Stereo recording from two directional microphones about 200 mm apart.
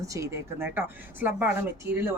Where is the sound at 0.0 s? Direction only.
15° right (ahead or behind).